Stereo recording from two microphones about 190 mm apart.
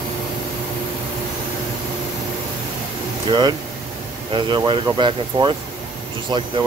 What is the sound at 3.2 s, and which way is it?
Speech, 25° right (ahead or behind).